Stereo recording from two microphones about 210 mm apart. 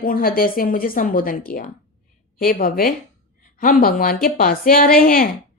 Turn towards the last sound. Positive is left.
turn(degrees=45)  # may be behind; listen again after turning